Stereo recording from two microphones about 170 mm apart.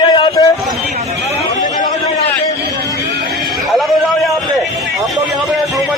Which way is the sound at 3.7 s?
Centre (ahead or behind).